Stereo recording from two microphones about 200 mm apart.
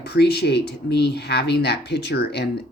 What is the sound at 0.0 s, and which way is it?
Speech, 55° left (ahead or behind).